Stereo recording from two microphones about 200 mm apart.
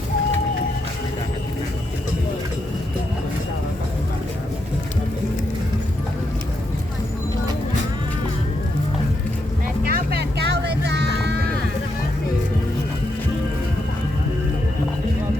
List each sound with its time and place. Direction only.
9.8 s music: 50° right (ahead or behind)